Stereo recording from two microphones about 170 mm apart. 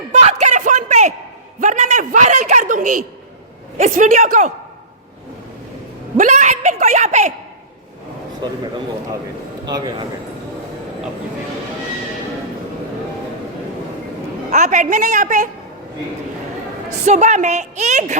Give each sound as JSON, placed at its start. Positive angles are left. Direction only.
{"t": 0.1, "sound": "a sound", "side_deg": -40}
{"t": 1.6, "sound": "a woman's voice", "side_deg": -45}
{"t": 6.1, "sound": "a woman's voice", "side_deg": -45}
{"t": 8.4, "sound": "a man's voice", "side_deg": -25}
{"t": 9.6, "sound": "a man's voice", "side_deg": -25}
{"t": 14.5, "sound": "a woman's voice", "side_deg": -45}
{"t": 17.1, "sound": "a woman's voice", "side_deg": -45}